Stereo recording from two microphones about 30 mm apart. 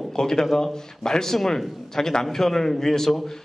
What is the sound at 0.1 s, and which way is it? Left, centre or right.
A man's voice, centre.